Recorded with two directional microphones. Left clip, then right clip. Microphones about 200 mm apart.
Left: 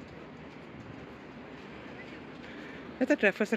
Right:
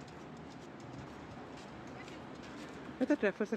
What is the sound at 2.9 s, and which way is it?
Speech, centre (ahead or behind).